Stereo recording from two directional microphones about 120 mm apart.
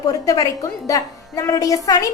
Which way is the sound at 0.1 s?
30° left (ahead or behind).